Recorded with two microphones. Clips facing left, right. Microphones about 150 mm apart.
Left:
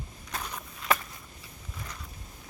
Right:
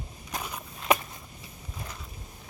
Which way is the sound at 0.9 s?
15° right (ahead or behind).